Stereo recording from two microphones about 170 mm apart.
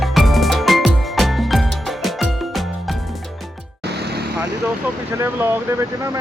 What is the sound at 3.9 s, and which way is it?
Vehicle, 70° right (ahead or behind).